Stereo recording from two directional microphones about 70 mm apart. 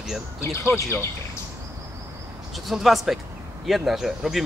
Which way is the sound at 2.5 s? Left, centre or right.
Centre.